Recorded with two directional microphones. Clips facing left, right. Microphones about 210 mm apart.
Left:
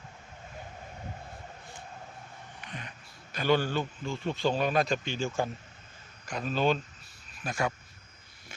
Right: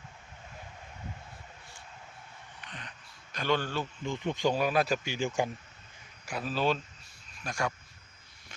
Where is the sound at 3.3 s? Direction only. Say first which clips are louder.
Left 4 dB; 5° left (ahead or behind).